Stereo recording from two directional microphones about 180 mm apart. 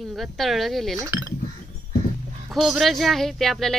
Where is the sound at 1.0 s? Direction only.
15° right (ahead or behind).